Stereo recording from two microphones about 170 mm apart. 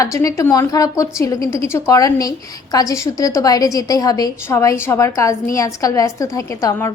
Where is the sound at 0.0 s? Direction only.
20° left (ahead or behind).